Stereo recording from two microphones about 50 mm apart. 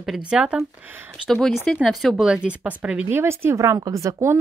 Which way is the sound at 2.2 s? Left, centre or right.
Centre.